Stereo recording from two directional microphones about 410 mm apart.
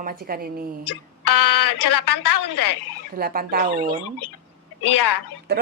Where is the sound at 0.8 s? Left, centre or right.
Left.